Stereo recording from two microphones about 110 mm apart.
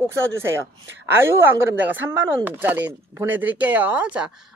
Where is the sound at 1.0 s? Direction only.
25° right (ahead or behind).